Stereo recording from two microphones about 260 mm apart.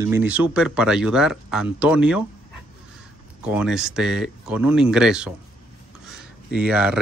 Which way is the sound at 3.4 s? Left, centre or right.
Centre.